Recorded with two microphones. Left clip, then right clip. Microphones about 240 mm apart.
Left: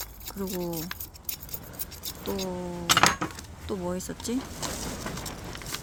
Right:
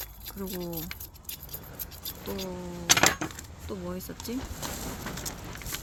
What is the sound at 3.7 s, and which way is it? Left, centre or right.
Speech, left.